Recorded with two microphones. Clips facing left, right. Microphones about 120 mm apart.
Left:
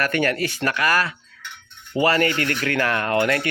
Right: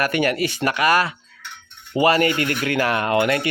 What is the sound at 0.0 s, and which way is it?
Speech, 15° right (ahead or behind).